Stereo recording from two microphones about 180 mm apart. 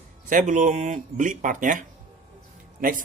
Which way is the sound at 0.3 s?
45° right (ahead or behind).